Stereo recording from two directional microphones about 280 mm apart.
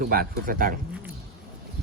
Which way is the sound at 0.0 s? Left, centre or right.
Right.